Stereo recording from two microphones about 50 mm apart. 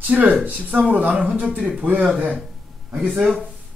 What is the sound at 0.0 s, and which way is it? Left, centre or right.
Speech, right.